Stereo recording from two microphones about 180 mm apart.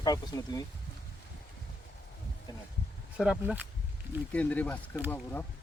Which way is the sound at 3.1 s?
5° right (ahead or behind).